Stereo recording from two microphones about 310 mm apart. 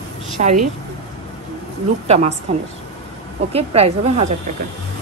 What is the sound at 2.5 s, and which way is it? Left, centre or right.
Speech, centre.